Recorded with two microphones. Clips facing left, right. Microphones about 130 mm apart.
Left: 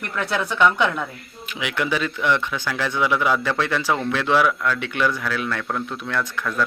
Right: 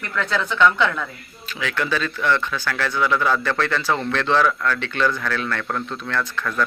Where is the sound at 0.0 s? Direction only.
15° left (ahead or behind).